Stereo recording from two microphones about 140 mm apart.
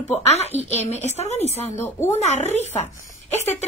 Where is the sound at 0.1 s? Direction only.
50° left (ahead or behind).